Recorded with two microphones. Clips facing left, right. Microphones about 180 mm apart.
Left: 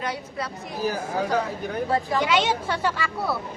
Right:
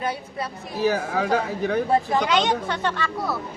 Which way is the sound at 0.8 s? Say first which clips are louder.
Right 4 dB; 70° right (ahead or behind).